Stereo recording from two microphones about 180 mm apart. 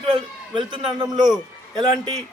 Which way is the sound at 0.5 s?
25° right (ahead or behind).